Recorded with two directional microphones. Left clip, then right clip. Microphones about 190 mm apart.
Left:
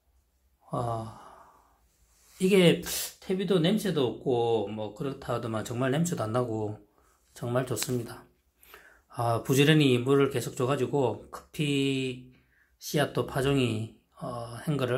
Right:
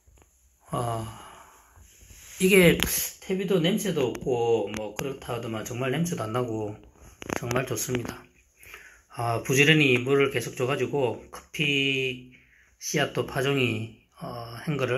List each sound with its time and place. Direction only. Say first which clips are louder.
0.7 s speech: right 2 dB; 20° left (ahead or behind)
2.4 s speech: right 3 dB; 15° left (ahead or behind)
2.9 s speech: right 2 dB; 35° left (ahead or behind)